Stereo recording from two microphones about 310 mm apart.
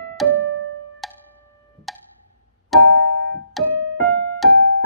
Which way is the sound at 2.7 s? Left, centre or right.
Centre.